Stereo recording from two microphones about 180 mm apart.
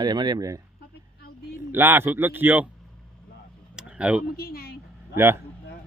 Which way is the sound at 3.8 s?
5° right (ahead or behind).